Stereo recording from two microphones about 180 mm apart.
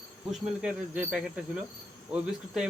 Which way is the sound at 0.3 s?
5° right (ahead or behind).